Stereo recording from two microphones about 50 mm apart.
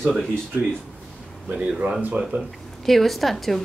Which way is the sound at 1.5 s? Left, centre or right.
Right.